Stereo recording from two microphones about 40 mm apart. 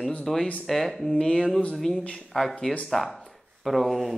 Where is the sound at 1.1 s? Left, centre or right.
Centre.